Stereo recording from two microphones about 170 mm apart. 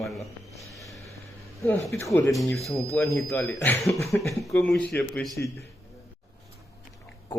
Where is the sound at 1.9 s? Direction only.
15° left (ahead or behind).